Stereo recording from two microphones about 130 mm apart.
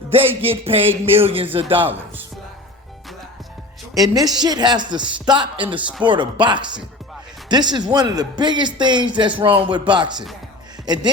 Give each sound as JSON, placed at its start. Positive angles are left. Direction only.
{"t": 0.1, "sound": "speech", "side_deg": -45}
{"t": 1.8, "sound": "speech", "side_deg": -15}
{"t": 3.9, "sound": "speech", "side_deg": -30}